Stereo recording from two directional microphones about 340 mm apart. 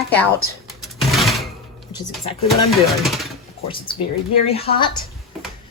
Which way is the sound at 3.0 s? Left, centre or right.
Centre.